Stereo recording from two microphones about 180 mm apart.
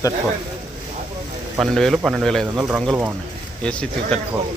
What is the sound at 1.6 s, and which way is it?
A man's voice, centre (ahead or behind).